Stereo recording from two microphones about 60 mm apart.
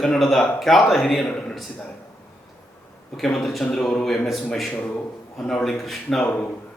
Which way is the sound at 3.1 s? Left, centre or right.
Centre.